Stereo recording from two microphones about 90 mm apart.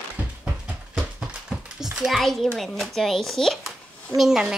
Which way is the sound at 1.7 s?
5° right (ahead or behind).